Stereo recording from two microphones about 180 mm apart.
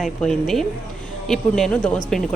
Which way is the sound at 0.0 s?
Centre (ahead or behind).